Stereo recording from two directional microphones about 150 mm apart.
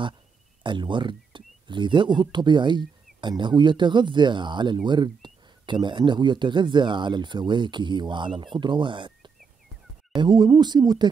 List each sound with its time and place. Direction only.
0.7 s speech: 30° right (ahead or behind)